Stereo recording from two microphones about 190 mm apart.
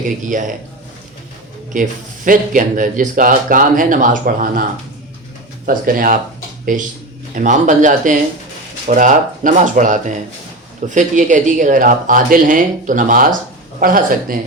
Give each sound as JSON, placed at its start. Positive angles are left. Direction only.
{"t": 0.2, "sound": "speech", "side_deg": -45}
{"t": 1.7, "sound": "speech", "side_deg": -45}
{"t": 5.6, "sound": "speech", "side_deg": -50}
{"t": 7.3, "sound": "speech", "side_deg": -40}